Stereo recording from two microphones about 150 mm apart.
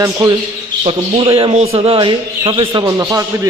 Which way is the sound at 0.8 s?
40° right (ahead or behind).